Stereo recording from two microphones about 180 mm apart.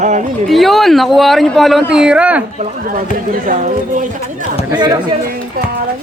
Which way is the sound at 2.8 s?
50° right (ahead or behind).